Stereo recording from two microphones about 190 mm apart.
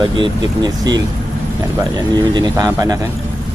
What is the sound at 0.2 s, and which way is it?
Speech, 20° right (ahead or behind).